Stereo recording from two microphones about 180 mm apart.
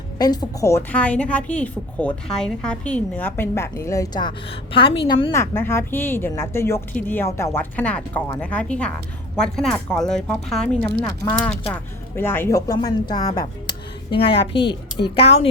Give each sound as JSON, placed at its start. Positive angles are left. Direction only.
{"t": 0.2, "sound": "a woman's voice", "side_deg": 20}
{"t": 5.4, "sound": "a woman's voice", "side_deg": 15}